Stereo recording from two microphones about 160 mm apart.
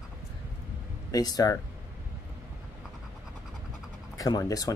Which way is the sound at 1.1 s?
25° left (ahead or behind).